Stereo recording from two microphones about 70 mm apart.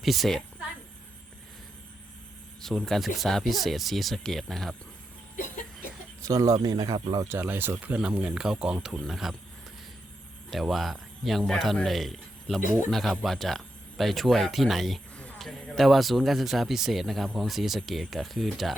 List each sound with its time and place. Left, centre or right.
0.0 s speech: centre
2.8 s speech: centre
6.2 s speech: right
6.6 s speech: right
7.4 s speech: right
8.1 s speech: centre
10.5 s speech: centre